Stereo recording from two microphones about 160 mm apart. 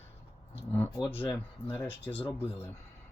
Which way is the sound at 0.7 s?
15° left (ahead or behind).